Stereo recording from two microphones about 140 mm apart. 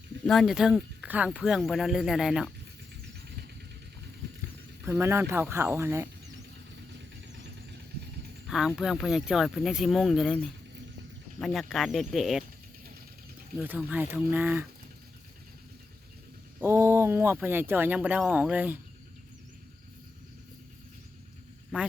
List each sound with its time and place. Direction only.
0.3 s speech: centre (ahead or behind)
4.9 s speech: 15° right (ahead or behind)
8.4 s speech: 5° right (ahead or behind)
13.6 s speech: 10° right (ahead or behind)
16.6 s speech: 20° right (ahead or behind)